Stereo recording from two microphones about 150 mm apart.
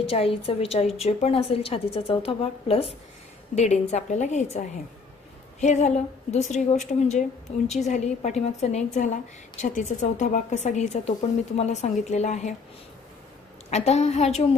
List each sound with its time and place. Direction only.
0.1 s a woman's voice: 40° left (ahead or behind)
13.7 s a woman's voice: 45° left (ahead or behind)